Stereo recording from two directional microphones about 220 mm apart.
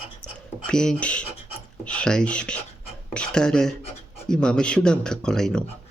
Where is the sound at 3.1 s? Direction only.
5° left (ahead or behind).